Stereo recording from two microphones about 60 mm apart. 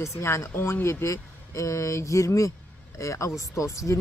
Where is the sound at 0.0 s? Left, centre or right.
Left.